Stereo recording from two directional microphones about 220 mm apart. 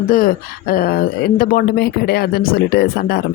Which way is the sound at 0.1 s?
40° left (ahead or behind).